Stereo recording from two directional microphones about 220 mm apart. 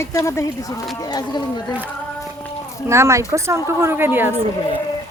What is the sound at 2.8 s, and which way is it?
Speech, 15° right (ahead or behind).